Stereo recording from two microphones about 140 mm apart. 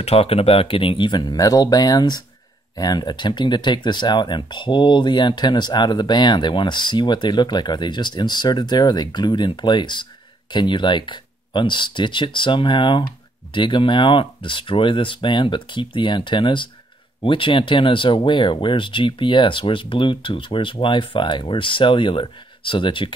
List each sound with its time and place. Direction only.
0.0 s speech: 45° left (ahead or behind)